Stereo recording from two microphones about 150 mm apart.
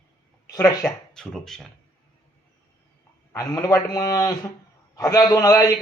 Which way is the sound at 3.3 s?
25° left (ahead or behind).